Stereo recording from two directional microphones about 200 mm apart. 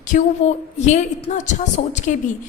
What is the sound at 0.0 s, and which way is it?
A woman's voice, 35° left (ahead or behind).